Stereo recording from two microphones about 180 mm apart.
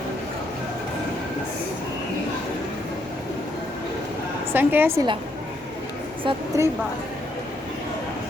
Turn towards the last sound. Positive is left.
turn(degrees=-15)  # may be behind; listen again after turning